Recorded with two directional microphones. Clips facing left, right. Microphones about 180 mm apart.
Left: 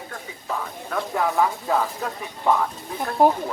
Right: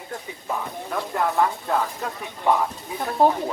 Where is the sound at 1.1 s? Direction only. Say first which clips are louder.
Even; centre (ahead or behind).